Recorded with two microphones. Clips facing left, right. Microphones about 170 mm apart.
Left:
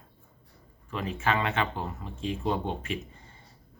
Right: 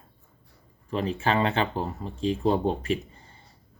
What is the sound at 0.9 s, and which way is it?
Speech, 35° right (ahead or behind).